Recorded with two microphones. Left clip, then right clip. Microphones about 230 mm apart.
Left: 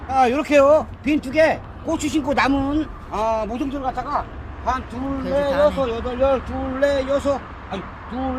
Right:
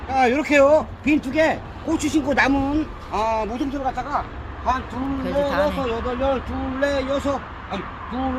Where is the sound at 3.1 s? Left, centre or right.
Left.